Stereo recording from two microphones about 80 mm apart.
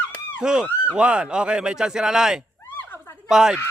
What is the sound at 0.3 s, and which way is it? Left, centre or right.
Speech, centre.